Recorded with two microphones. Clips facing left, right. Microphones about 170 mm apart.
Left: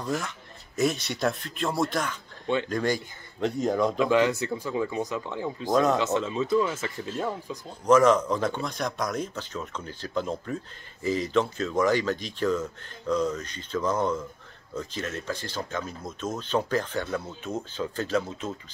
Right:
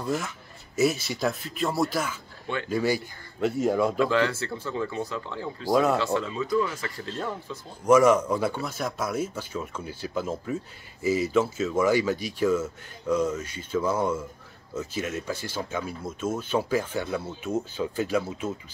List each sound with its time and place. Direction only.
0.0 s speech: centre (ahead or behind)
4.0 s speech: 15° left (ahead or behind)
5.7 s speech: 10° right (ahead or behind)
5.9 s speech: 20° left (ahead or behind)
7.8 s speech: 10° right (ahead or behind)